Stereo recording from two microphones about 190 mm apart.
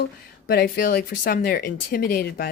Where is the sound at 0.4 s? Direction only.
55° left (ahead or behind).